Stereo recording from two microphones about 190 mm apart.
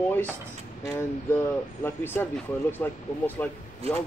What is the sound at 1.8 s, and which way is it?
Speech, 10° left (ahead or behind).